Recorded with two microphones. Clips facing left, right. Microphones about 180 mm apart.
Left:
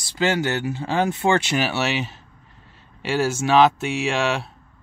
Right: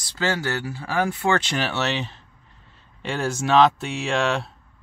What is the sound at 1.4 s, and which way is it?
Speech, 10° left (ahead or behind).